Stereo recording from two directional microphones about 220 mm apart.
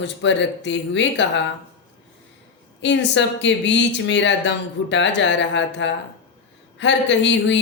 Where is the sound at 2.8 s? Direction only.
55° left (ahead or behind).